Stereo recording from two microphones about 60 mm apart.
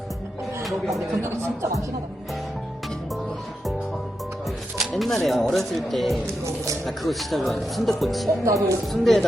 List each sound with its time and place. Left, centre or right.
0.6 s music: centre
1.2 s speech: right
4.9 s speech: centre
6.2 s speech: right
6.8 s speech: centre
8.4 s speech: right
8.9 s speech: centre